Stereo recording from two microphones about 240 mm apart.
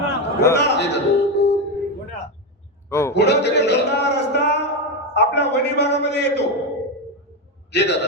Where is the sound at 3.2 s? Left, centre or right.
Left.